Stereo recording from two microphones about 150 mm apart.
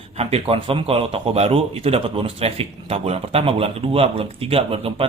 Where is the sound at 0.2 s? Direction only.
45° right (ahead or behind).